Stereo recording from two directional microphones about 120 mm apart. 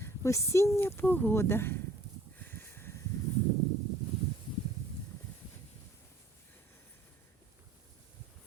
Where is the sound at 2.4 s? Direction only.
15° left (ahead or behind).